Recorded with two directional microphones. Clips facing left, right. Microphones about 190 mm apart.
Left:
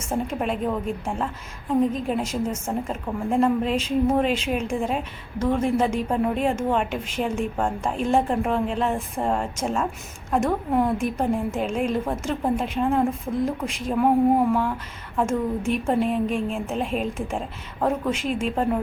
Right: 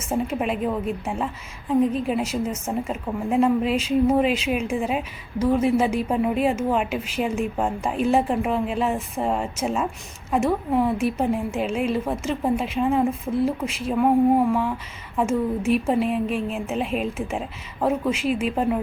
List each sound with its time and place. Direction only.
0.1 s a woman's voice: 5° right (ahead or behind)